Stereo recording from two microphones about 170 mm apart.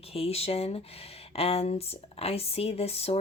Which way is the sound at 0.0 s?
35° left (ahead or behind).